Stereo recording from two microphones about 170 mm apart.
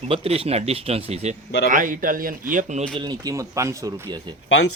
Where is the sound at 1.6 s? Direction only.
50° right (ahead or behind).